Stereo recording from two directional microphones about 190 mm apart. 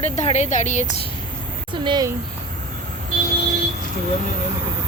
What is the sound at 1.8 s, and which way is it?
Speech, 20° right (ahead or behind).